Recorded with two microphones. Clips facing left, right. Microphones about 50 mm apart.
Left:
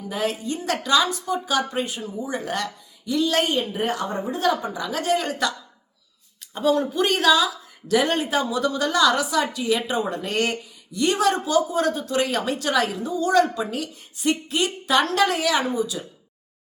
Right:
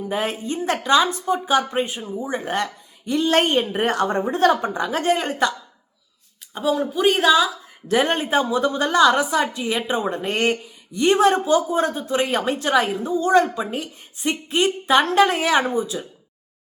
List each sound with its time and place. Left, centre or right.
0.0 s a woman's voice: right
3.1 s a woman's voice: right
6.5 s speech: centre
7.9 s a woman's voice: right